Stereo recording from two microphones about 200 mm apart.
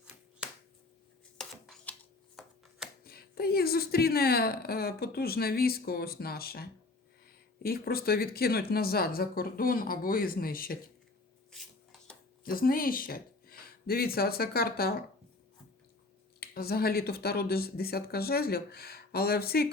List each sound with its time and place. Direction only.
1.4 s chopping: 5° left (ahead or behind)
3.0 s a woman's voice: 50° left (ahead or behind)
11.5 s a sound: centre (ahead or behind)
12.5 s speech: 45° left (ahead or behind)
16.4 s a woman's voice: 50° left (ahead or behind)